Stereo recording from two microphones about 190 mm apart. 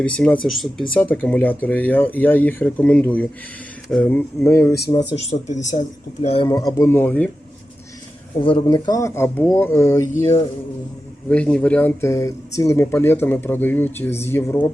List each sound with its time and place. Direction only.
0.0 s speech: 5° left (ahead or behind)
5.1 s speech: 35° left (ahead or behind)
6.5 s speech: 20° left (ahead or behind)
8.6 s speech: 20° left (ahead or behind)
11.3 s speech: 5° left (ahead or behind)